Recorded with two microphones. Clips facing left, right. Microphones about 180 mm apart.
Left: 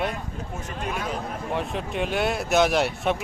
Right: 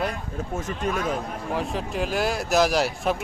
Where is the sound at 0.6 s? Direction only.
45° right (ahead or behind).